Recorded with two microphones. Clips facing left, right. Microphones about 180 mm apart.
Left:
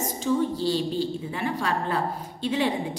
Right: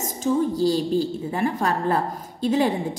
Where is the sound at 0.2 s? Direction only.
45° right (ahead or behind).